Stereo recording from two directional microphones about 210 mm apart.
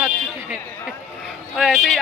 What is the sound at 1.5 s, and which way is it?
Speech, centre (ahead or behind).